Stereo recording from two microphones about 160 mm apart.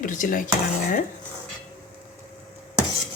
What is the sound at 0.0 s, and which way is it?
Speech, 55° left (ahead or behind).